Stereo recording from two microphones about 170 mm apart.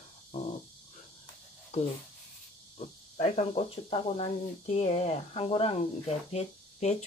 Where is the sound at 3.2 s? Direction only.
40° left (ahead or behind).